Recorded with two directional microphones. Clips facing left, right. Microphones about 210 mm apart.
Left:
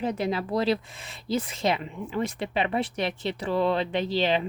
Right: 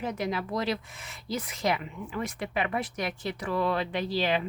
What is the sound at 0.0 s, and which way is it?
Speech, 30° left (ahead or behind).